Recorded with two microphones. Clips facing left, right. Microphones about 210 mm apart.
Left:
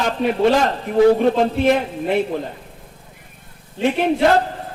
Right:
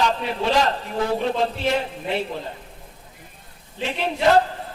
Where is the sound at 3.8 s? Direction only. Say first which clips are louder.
Left 9 dB; 50° left (ahead or behind).